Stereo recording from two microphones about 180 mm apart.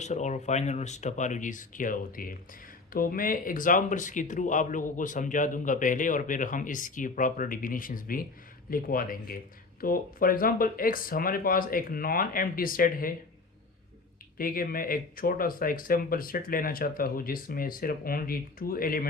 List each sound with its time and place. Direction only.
0.0 s speech: 40° left (ahead or behind)
14.3 s speech: 55° left (ahead or behind)